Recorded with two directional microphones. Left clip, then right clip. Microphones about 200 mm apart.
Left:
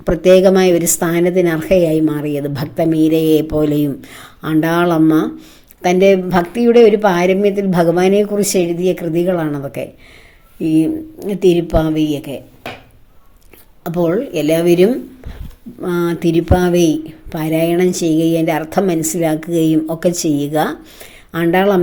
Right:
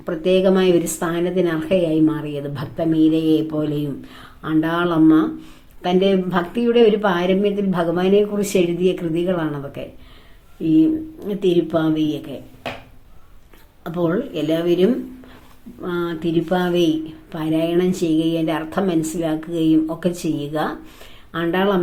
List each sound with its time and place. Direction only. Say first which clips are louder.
0.0 s a woman's voice: left 8 dB; 35° left (ahead or behind)
11.3 s a woman's voice: left 5 dB; 30° left (ahead or behind)
13.8 s a woman's voice: left 5 dB; 35° left (ahead or behind)